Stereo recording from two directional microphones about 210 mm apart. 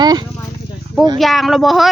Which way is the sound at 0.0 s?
20° right (ahead or behind).